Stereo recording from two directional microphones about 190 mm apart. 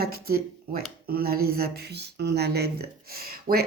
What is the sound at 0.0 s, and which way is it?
Speech, 55° right (ahead or behind).